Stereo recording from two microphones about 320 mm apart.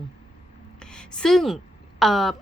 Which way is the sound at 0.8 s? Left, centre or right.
Centre.